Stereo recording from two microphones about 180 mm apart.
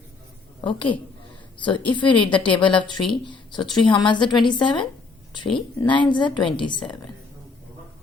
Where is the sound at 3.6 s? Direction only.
25° left (ahead or behind).